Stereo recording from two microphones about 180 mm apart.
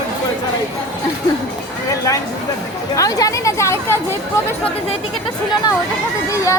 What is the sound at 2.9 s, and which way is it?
Speech, 20° left (ahead or behind).